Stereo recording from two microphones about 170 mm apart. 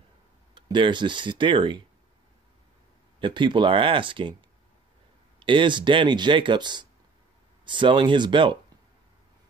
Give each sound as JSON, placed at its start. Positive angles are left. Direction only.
{"t": 0.6, "sound": "speech", "side_deg": -25}
{"t": 3.2, "sound": "speech", "side_deg": -30}
{"t": 5.4, "sound": "speech", "side_deg": -30}